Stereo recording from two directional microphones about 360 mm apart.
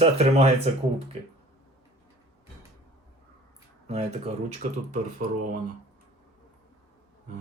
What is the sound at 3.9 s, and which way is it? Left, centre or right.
Speech, centre.